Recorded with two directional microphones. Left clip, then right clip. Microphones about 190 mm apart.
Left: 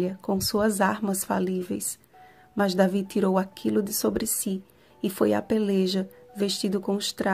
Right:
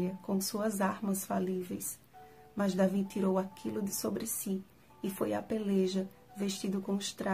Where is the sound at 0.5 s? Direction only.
40° left (ahead or behind).